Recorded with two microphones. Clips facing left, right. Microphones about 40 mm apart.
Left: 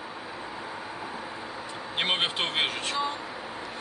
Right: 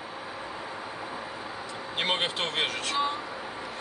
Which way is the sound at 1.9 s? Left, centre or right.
Centre.